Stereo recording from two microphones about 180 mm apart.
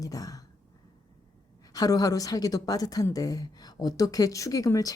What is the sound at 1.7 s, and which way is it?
A woman's voice, 20° left (ahead or behind).